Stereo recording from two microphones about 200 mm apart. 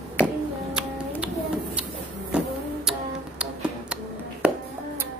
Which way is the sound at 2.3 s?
5° right (ahead or behind).